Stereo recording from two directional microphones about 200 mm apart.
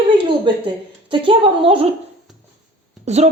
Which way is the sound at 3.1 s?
35° right (ahead or behind).